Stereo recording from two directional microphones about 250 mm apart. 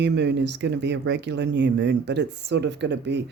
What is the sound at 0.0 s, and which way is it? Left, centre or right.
Speech, right.